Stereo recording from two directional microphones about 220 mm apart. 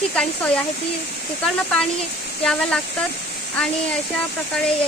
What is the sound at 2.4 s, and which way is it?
Speech, 5° left (ahead or behind).